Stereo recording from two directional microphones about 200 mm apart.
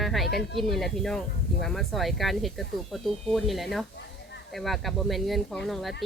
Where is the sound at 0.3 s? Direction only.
Centre (ahead or behind).